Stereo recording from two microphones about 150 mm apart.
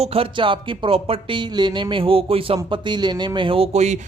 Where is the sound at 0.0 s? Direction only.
40° right (ahead or behind).